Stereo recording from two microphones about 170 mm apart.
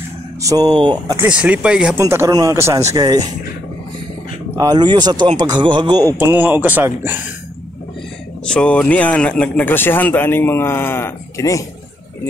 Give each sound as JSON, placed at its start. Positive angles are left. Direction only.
{"t": 0.4, "sound": "speech", "side_deg": -20}
{"t": 1.2, "sound": "speech", "side_deg": -5}
{"t": 2.0, "sound": "speech", "side_deg": -15}
{"t": 4.6, "sound": "speech", "side_deg": -25}
{"t": 6.1, "sound": "speech", "side_deg": -10}
{"t": 8.5, "sound": "speech", "side_deg": 5}